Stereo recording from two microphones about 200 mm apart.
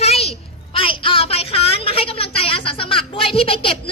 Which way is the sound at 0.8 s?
25° left (ahead or behind).